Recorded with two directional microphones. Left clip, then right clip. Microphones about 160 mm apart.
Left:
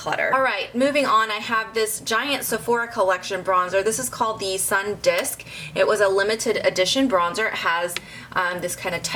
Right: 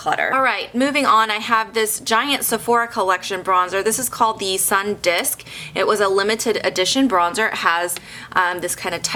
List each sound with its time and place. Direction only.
0.0 s a woman's voice: 25° right (ahead or behind)